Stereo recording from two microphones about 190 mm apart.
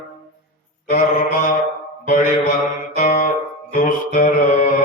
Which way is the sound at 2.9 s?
45° left (ahead or behind).